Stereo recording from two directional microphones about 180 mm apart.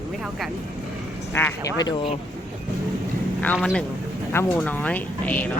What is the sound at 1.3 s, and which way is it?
Speech, 15° left (ahead or behind).